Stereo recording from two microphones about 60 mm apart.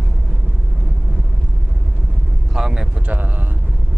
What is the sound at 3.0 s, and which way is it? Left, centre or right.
Speech, right.